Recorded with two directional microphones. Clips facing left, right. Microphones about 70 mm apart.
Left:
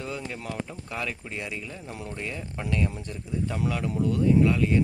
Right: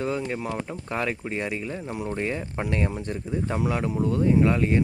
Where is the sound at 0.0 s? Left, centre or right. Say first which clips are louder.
Right 7 dB; right.